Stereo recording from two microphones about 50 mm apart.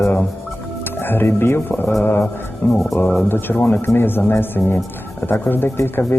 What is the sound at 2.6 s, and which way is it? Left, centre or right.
Speech, left.